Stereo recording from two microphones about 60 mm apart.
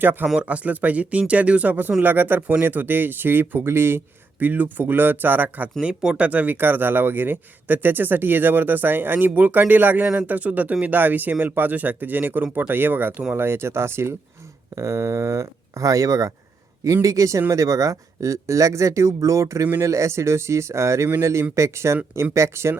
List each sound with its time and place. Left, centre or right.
0.0 s speech: right
4.4 s speech: right
5.8 s speech: centre; by 14.2 s right
14.8 s speech: right